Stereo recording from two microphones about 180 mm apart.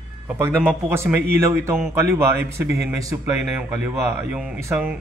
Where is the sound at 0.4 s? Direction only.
10° right (ahead or behind).